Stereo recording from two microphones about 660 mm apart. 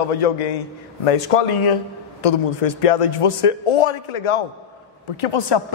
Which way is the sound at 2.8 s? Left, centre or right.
Left.